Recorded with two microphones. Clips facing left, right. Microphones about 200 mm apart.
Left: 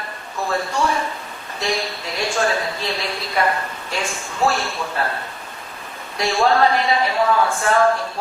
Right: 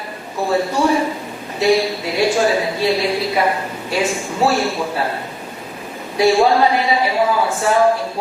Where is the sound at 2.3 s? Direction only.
5° right (ahead or behind).